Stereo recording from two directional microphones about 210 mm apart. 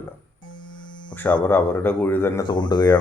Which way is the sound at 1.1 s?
10° left (ahead or behind).